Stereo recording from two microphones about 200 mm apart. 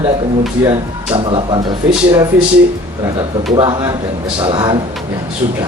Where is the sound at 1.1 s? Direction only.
25° right (ahead or behind).